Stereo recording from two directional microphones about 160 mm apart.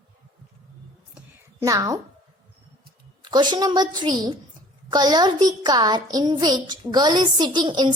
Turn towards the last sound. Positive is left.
turn(degrees=-30)  # may be behind; listen again after turning